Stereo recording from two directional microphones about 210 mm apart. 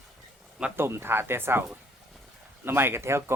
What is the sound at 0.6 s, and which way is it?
Speech, 10° right (ahead or behind).